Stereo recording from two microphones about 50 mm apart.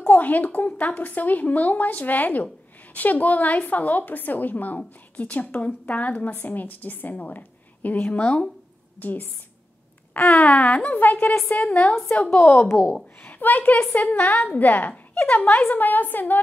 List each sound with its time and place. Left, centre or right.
0.0 s a woman's voice: left
9.0 s a woman's voice: left
12.4 s a woman's voice: left
13.2 s a woman's voice: left